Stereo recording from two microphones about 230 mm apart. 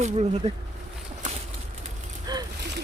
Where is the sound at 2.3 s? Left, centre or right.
Centre.